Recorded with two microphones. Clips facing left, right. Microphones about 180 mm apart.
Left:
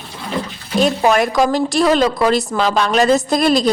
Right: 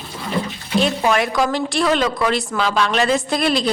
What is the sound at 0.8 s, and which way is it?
A woman's voice, 40° left (ahead or behind).